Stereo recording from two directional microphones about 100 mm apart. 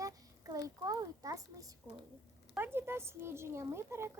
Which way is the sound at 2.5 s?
20° right (ahead or behind).